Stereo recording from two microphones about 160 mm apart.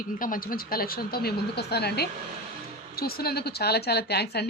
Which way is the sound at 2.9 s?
70° left (ahead or behind).